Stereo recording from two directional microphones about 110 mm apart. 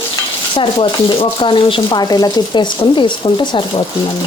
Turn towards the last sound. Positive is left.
turn(degrees=40)  # may be behind; listen again after turning